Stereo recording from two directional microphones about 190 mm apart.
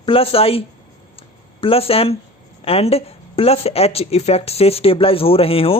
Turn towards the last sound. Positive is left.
turn(degrees=30)  # may be behind; listen again after turning